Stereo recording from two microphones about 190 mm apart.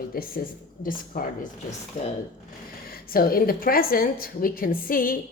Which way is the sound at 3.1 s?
50° left (ahead or behind).